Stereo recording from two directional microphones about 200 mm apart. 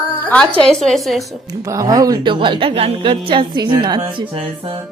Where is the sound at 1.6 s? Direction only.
15° right (ahead or behind).